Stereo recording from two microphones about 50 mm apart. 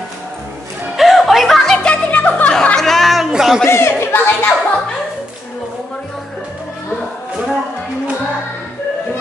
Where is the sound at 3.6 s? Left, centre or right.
Left.